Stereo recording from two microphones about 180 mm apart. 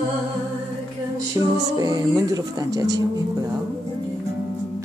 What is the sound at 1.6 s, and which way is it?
Speech, 20° right (ahead or behind).